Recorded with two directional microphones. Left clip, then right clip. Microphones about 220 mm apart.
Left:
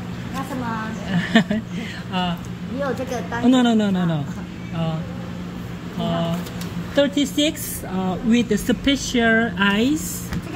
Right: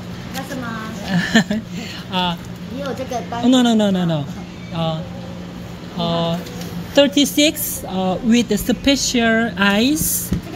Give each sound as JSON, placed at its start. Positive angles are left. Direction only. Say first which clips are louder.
{"t": 1.1, "sound": "a sound", "louder": "right 3 dB", "side_deg": -15}
{"t": 3.4, "sound": "speech", "louder": "right 3 dB", "side_deg": -15}
{"t": 5.9, "sound": "a woman's voice", "louder": "right 4 dB", "side_deg": -20}